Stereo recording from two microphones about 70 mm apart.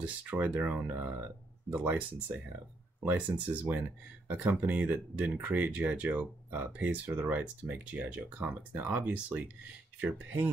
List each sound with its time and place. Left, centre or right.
0.0 s speech: right